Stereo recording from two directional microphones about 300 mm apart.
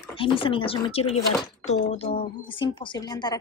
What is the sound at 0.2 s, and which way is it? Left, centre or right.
Speech, centre.